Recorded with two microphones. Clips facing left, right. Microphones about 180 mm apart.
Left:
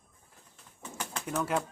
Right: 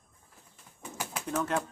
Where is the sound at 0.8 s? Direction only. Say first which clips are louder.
Right 1 dB; 10° right (ahead or behind).